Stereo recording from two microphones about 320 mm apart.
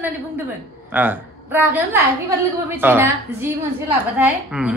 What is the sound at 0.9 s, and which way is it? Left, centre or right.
A woman's voice, centre.